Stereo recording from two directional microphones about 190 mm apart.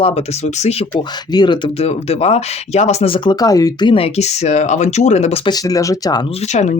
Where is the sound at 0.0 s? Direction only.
30° left (ahead or behind).